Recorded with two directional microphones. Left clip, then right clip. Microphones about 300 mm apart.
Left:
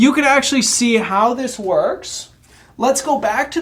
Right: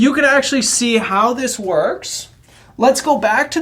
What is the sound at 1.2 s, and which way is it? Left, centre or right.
Speech, centre.